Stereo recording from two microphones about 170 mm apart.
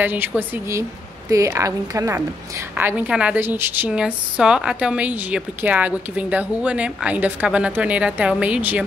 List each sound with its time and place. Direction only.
0.0 s a woman's voice: 10° right (ahead or behind)